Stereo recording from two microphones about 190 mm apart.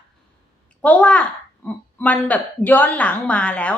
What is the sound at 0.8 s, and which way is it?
A woman's voice, 10° left (ahead or behind).